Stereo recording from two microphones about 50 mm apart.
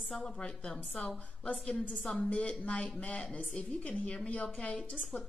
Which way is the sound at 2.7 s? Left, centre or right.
Left.